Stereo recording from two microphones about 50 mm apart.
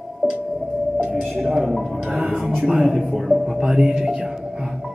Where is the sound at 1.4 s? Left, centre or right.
Centre.